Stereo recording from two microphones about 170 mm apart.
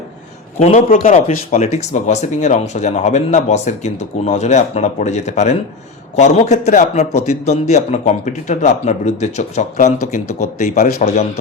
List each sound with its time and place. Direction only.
0.6 s speech: 45° left (ahead or behind)